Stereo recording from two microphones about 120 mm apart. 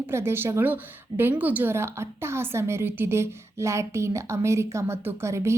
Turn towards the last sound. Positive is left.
turn(degrees=-25)  # may be behind; listen again after turning